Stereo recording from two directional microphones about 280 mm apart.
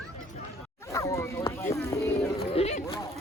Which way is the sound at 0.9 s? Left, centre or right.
Centre.